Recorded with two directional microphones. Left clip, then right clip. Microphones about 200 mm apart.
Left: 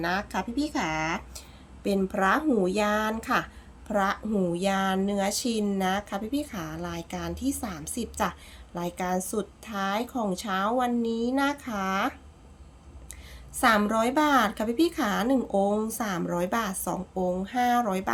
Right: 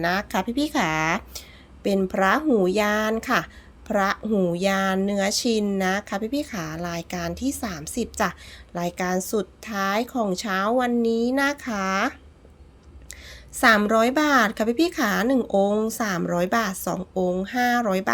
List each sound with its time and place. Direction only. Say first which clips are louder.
0.0 s speech: right 5 dB; 30° right (ahead or behind)
13.6 s speech: right 5 dB; 25° right (ahead or behind)